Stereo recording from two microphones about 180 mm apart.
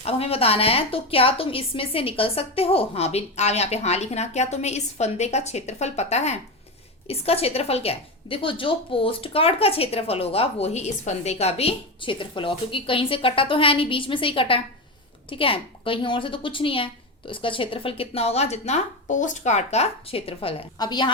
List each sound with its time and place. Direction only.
0.0 s a woman's voice: 35° left (ahead or behind)